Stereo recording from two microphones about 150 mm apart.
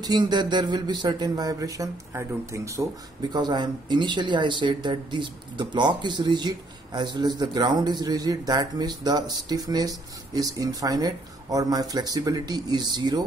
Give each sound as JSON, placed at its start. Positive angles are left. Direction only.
{"t": 0.0, "sound": "speech", "side_deg": -30}